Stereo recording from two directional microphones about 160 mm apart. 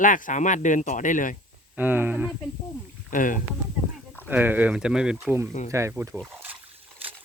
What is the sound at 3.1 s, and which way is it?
Speech, 55° left (ahead or behind).